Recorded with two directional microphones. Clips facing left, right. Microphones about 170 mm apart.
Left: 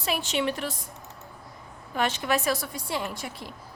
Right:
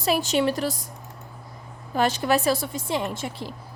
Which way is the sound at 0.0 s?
40° right (ahead or behind).